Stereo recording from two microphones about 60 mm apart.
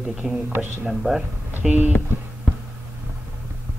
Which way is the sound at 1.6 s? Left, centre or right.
Right.